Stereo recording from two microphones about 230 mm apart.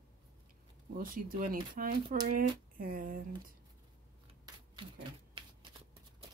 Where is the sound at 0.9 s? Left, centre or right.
Right.